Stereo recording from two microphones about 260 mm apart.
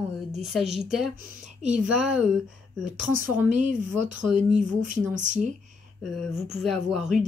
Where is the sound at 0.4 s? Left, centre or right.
Centre.